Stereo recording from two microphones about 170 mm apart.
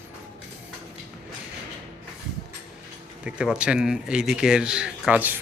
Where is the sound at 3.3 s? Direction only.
5° right (ahead or behind).